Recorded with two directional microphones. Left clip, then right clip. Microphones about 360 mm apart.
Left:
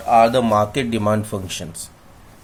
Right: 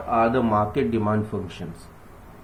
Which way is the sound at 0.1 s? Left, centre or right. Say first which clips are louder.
Left 7 dB; left.